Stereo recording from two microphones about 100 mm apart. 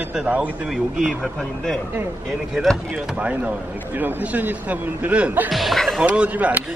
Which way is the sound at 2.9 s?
10° right (ahead or behind).